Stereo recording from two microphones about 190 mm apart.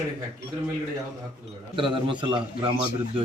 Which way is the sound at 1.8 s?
25° right (ahead or behind).